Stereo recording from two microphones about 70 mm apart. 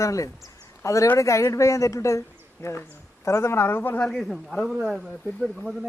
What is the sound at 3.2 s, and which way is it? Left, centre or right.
Speech, left.